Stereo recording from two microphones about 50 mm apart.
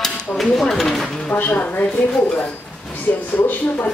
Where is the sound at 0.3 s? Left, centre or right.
Centre.